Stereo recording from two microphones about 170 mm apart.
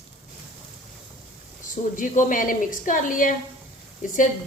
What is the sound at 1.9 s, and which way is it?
A woman's voice, 50° left (ahead or behind).